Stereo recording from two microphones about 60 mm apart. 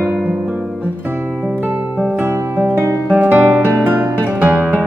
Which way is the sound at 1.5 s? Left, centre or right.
Right.